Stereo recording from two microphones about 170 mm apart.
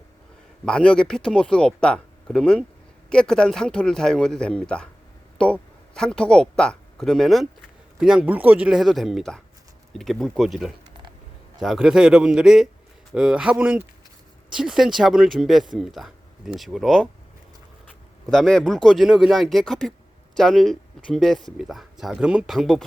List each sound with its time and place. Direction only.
0.6 s speech: 5° left (ahead or behind)
18.3 s speech: centre (ahead or behind)